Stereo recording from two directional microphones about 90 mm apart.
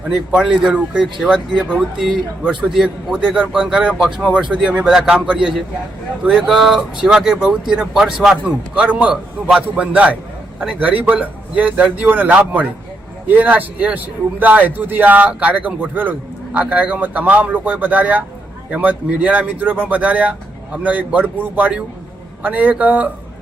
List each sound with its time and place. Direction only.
0.3 s a man's voice: 5° right (ahead or behind)